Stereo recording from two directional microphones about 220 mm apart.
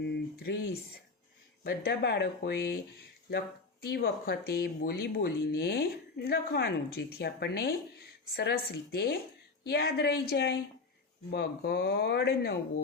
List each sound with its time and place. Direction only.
0.0 s a sound: 45° left (ahead or behind)
1.6 s speech: 45° left (ahead or behind)
3.8 s speech: 45° left (ahead or behind)